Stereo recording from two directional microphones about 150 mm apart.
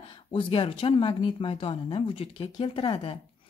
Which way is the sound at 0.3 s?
35° left (ahead or behind).